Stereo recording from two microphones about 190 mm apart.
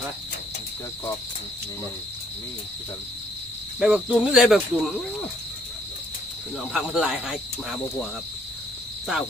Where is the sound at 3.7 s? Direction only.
5° right (ahead or behind).